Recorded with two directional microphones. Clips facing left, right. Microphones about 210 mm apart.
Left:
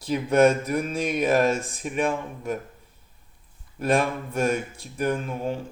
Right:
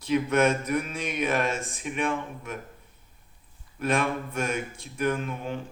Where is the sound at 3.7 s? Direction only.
35° left (ahead or behind).